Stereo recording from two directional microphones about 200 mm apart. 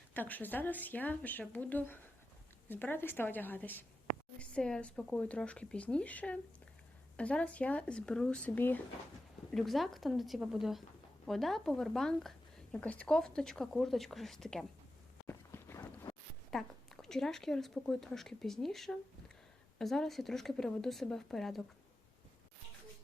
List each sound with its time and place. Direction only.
0.1 s speech: 10° left (ahead or behind)
15.3 s a sound: 15° left (ahead or behind)
16.5 s speech: centre (ahead or behind)